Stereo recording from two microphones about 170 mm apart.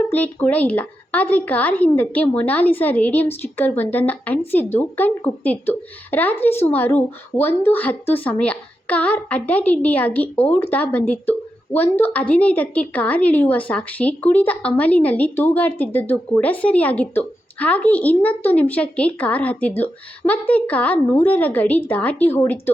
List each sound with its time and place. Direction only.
0.1 s a woman's voice: 10° left (ahead or behind)